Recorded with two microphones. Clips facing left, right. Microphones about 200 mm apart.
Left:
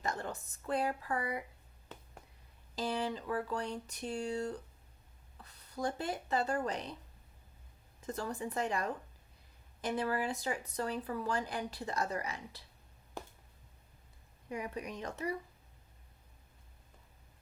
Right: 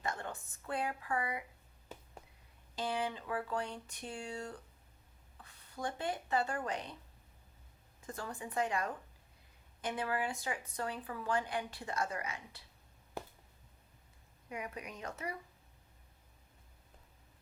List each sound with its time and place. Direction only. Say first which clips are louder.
0.0 s a sound: left 2 dB; 40° left (ahead or behind)
0.8 s speech: left 1 dB; 40° left (ahead or behind)
2.7 s speech: left 2 dB; 40° left (ahead or behind)
8.0 s speech: left 5 dB; 40° left (ahead or behind)
14.5 s speech: left 4 dB; 30° left (ahead or behind)